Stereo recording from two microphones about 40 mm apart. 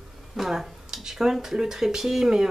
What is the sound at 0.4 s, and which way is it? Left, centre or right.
Speech, centre.